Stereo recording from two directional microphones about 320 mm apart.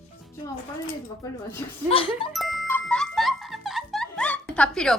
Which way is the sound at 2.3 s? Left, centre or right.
Centre.